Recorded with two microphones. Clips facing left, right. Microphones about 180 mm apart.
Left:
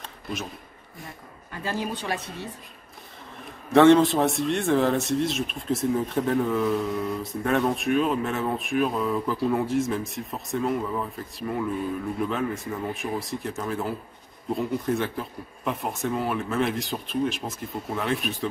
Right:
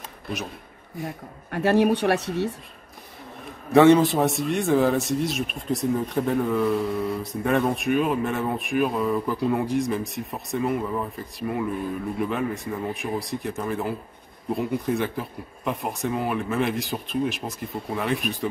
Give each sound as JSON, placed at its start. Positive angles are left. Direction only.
{"t": 0.0, "sound": "a sound", "side_deg": 0}
{"t": 1.0, "sound": "speech", "side_deg": -70}
{"t": 3.7, "sound": "a man's voice", "side_deg": 0}